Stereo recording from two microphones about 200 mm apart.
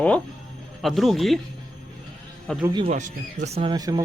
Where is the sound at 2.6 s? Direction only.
20° right (ahead or behind).